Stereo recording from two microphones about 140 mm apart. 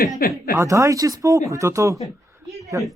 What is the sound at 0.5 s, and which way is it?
A man's voice, 20° right (ahead or behind).